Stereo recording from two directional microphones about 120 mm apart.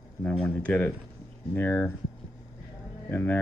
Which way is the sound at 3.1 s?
15° left (ahead or behind).